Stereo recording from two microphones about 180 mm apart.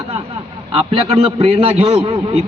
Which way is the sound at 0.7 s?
30° right (ahead or behind).